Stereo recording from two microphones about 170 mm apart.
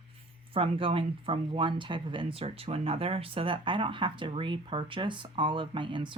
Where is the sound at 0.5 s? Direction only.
35° right (ahead or behind).